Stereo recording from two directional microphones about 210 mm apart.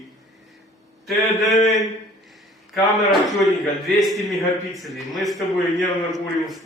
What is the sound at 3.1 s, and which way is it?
A man's voice, centre (ahead or behind).